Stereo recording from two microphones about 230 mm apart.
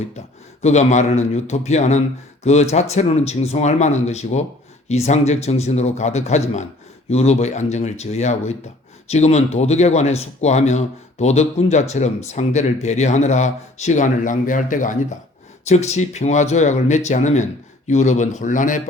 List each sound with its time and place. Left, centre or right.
0.6 s a man's voice: left